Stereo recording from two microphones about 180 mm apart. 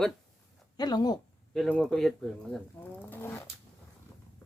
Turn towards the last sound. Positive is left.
turn(degrees=15)  # may be behind; listen again after turning